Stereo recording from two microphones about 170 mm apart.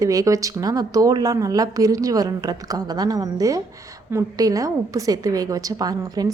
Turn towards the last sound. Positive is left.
turn(degrees=-20)  # may be behind; listen again after turning